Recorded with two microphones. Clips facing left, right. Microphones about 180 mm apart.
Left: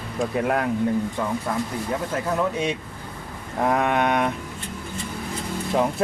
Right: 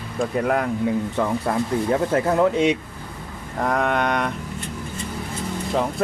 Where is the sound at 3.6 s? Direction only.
5° left (ahead or behind).